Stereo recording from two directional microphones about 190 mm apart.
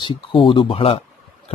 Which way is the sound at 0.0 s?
30° left (ahead or behind).